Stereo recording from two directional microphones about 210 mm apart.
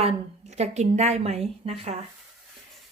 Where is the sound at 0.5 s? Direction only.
35° right (ahead or behind).